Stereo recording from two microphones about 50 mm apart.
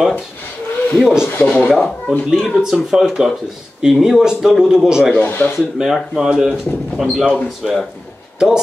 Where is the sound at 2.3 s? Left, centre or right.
Centre.